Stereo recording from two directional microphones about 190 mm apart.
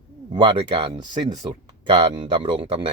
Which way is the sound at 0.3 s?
25° right (ahead or behind).